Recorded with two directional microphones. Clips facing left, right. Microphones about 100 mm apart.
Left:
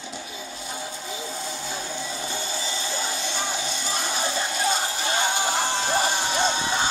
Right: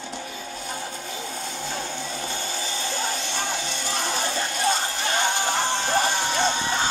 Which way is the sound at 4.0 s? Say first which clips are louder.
Right 1 dB; 10° left (ahead or behind).